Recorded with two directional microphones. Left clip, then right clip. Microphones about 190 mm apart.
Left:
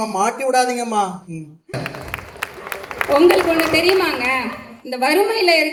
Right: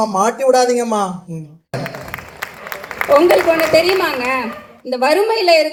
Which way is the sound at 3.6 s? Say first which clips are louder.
Right 3 dB; 45° left (ahead or behind).